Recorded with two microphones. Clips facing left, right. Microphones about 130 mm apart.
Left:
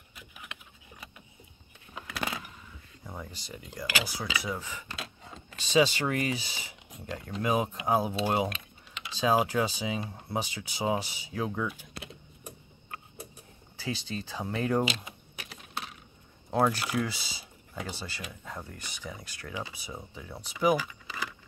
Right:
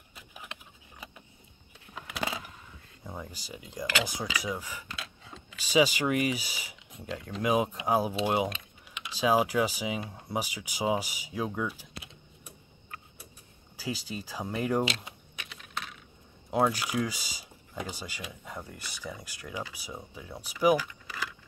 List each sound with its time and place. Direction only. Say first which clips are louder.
0.1 s a sound: right 1 dB; 30° right (ahead or behind)
2.0 s keys jangling: right 1 dB; 15° right (ahead or behind)
3.0 s speech: right 1 dB; 5° right (ahead or behind)
4.9 s a sound: left 2 dB; 35° left (ahead or behind)
5.7 s speech: even; 10° right (ahead or behind)
13.7 s speech: left 1 dB; 10° right (ahead or behind)
15.3 s typing: even; 35° left (ahead or behind)
16.4 s speech: even; 10° right (ahead or behind)
20.7 s keys jangling: right 1 dB; 15° left (ahead or behind)